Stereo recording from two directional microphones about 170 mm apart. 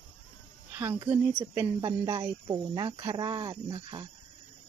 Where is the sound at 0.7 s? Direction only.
20° right (ahead or behind).